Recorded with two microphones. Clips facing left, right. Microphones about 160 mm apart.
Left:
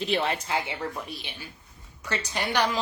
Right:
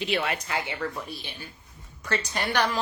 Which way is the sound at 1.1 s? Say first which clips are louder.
Even; 15° left (ahead or behind).